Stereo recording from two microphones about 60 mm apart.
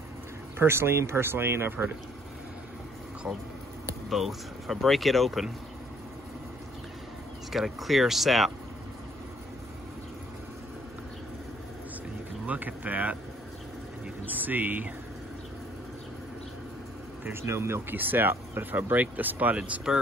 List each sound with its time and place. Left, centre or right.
0.6 s speech: right
3.3 s speech: centre
4.1 s speech: centre
7.5 s speech: centre
12.4 s speech: right
14.2 s speech: right
17.2 s speech: right